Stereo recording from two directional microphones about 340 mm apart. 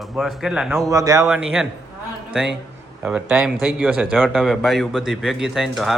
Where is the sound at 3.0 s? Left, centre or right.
Centre.